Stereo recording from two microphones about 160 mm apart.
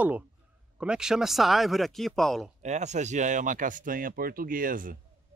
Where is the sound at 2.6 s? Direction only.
45° right (ahead or behind).